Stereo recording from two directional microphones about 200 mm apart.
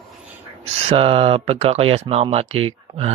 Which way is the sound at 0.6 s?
30° right (ahead or behind).